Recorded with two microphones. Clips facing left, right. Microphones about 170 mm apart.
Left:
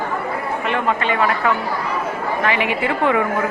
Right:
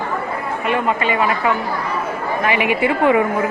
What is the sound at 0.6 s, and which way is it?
A man's voice, 10° right (ahead or behind).